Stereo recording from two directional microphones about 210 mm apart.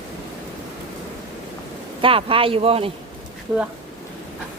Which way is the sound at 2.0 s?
25° right (ahead or behind).